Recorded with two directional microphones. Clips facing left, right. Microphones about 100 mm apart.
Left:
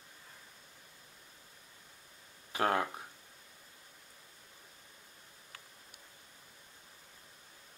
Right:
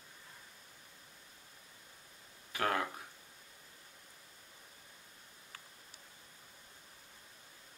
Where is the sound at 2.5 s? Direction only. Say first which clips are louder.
Left 3 dB; 25° left (ahead or behind).